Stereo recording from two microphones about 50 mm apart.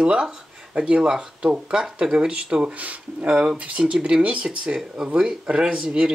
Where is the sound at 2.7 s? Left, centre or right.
Right.